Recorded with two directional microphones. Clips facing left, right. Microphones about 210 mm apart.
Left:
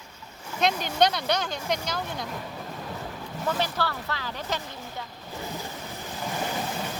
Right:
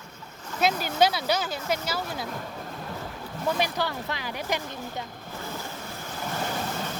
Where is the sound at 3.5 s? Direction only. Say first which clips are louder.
Right 1 dB; 15° right (ahead or behind).